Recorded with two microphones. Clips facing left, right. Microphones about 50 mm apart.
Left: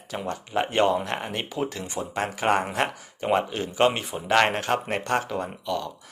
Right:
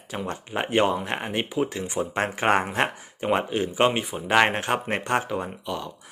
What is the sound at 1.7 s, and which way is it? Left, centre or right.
Speech, right.